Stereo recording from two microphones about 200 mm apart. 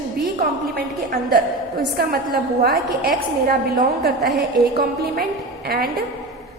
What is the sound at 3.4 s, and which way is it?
A woman's voice, 50° right (ahead or behind).